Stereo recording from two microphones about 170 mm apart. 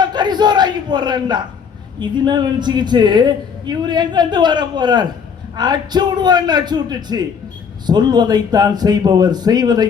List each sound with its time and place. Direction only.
0.0 s a man's voice: 25° right (ahead or behind)